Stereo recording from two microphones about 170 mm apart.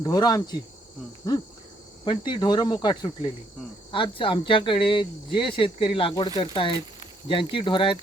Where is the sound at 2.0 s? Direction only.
25° left (ahead or behind).